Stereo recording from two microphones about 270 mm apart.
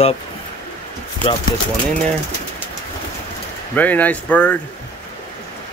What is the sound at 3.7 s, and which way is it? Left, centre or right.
Speech, centre.